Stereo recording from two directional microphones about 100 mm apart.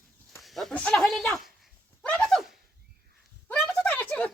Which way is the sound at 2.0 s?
5° left (ahead or behind).